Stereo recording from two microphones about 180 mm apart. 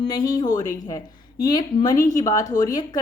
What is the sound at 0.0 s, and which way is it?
Speech, 25° left (ahead or behind).